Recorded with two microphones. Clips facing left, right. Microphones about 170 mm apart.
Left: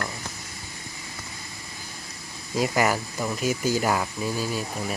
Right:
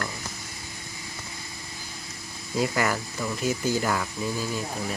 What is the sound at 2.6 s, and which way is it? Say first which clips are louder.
Speech: left 2 dB; 15° left (ahead or behind).